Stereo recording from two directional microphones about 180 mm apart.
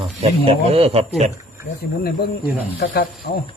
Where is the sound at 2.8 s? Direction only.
60° left (ahead or behind).